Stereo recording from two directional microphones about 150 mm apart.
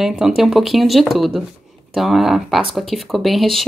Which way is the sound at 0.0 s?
5° right (ahead or behind).